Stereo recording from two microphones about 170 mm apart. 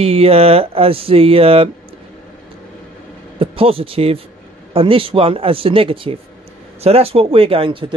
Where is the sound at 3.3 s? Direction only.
35° right (ahead or behind).